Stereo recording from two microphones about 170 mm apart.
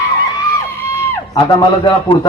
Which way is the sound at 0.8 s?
15° left (ahead or behind).